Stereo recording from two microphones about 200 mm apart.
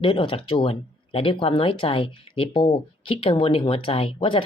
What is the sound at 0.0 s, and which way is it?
Speech, 25° left (ahead or behind).